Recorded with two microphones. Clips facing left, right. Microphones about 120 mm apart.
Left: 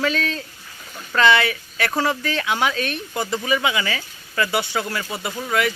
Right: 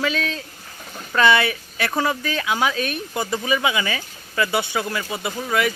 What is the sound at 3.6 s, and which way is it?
Speech, 20° right (ahead or behind).